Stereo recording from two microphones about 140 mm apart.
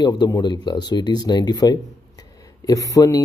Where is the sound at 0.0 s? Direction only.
30° left (ahead or behind).